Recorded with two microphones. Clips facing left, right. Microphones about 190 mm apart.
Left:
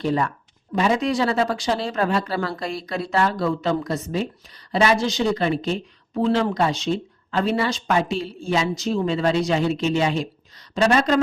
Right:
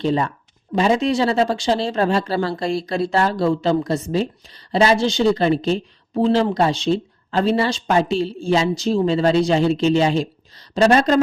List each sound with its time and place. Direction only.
0.0 s a woman's voice: 25° right (ahead or behind)